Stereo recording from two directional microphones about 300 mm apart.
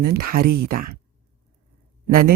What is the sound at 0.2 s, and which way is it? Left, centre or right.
Speech, right.